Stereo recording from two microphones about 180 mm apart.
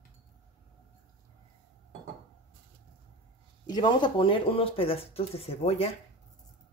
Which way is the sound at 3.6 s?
25° left (ahead or behind).